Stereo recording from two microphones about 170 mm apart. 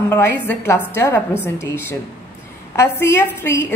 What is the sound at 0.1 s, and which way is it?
A woman's voice, 10° left (ahead or behind).